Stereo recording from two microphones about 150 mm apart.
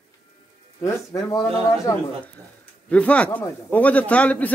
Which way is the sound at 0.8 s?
25° left (ahead or behind).